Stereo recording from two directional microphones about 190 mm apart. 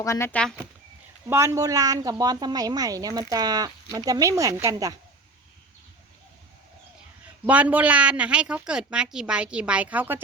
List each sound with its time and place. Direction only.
0.0 s speech: 15° left (ahead or behind)
1.3 s a woman's voice: 15° right (ahead or behind)
7.4 s a woman's voice: 10° right (ahead or behind)